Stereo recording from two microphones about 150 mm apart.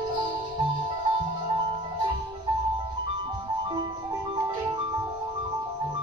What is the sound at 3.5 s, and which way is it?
Music, 30° right (ahead or behind).